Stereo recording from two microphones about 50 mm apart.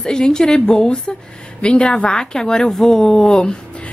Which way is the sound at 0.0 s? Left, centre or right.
Centre.